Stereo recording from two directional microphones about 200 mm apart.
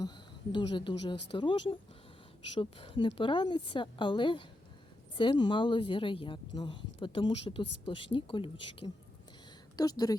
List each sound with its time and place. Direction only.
0.0 s a woman's voice: 20° left (ahead or behind)